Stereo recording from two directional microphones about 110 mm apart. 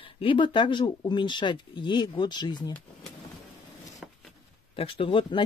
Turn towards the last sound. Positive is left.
turn(degrees=50)  # may be behind; listen again after turning